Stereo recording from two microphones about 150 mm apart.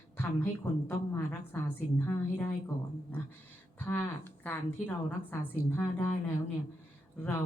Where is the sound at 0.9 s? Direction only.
15° left (ahead or behind).